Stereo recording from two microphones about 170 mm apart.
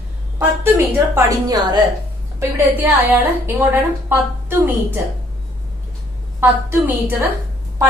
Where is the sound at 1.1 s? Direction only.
20° right (ahead or behind).